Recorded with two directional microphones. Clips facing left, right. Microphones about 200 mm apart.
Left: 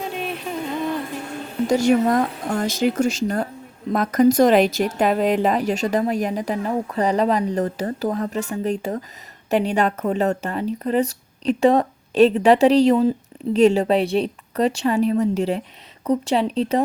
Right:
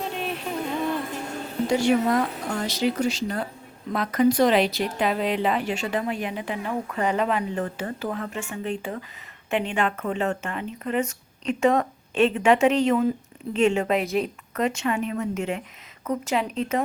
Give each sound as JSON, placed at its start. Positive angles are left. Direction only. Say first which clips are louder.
{"t": 0.1, "sound": "music", "louder": "left 2 dB", "side_deg": 0}
{"t": 1.6, "sound": "speech", "louder": "left 4 dB", "side_deg": 45}